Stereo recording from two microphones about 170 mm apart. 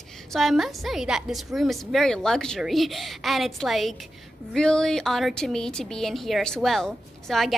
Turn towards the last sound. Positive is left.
turn(degrees=0)  # may be behind; listen again after turning